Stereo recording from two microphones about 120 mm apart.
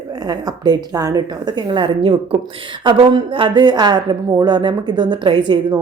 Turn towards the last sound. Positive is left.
turn(degrees=-40)  # may be behind; listen again after turning